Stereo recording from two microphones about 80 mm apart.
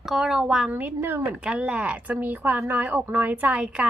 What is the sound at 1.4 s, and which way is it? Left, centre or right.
Speech, centre.